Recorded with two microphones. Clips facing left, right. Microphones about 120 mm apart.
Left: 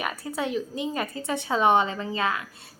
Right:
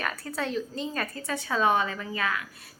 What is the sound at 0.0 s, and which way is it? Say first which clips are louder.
A woman's voice: left 2 dB; 15° left (ahead or behind).